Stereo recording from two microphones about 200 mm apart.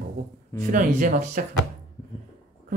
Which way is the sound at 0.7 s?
45° right (ahead or behind).